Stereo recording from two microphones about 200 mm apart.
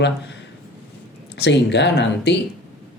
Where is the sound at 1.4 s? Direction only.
60° left (ahead or behind).